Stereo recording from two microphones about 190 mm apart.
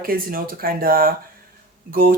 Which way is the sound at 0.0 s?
50° right (ahead or behind).